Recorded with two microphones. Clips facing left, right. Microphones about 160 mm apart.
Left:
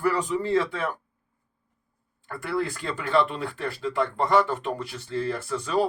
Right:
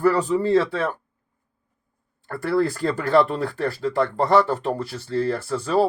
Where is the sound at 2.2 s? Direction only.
35° right (ahead or behind).